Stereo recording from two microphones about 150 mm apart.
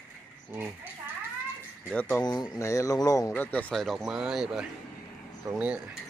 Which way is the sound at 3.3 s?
10° left (ahead or behind).